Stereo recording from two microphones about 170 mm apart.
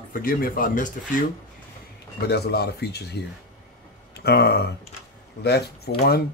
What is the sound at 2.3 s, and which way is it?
Speech, 70° left (ahead or behind).